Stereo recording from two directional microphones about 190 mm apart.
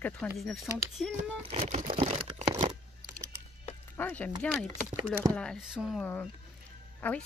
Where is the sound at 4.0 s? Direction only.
10° left (ahead or behind).